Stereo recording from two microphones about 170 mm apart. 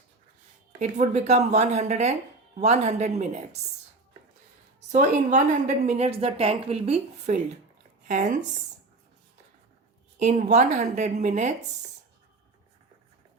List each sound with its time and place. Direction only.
0.8 s a woman's voice: 40° right (ahead or behind)
4.9 s a woman's voice: 50° right (ahead or behind)
10.2 s a woman's voice: 45° right (ahead or behind)